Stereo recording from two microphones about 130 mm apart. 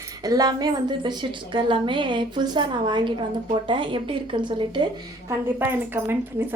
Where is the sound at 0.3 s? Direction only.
30° right (ahead or behind).